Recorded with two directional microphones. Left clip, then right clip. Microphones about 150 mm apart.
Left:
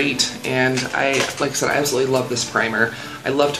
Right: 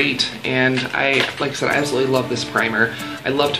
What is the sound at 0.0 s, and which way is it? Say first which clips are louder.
Speech: right 1 dB; 5° left (ahead or behind).